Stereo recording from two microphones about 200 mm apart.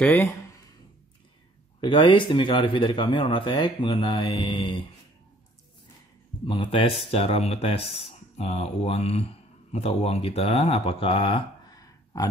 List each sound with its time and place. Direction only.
0.0 s speech: 10° left (ahead or behind)
1.8 s speech: 25° left (ahead or behind)
6.4 s speech: 25° left (ahead or behind)